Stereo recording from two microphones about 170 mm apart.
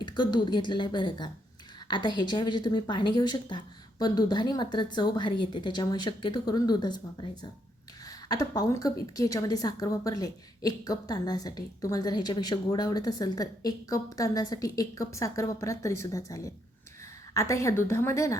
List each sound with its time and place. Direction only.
0.0 s a woman's voice: 25° left (ahead or behind)